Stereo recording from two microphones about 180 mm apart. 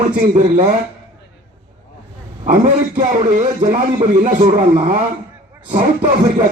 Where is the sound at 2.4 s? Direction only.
45° right (ahead or behind).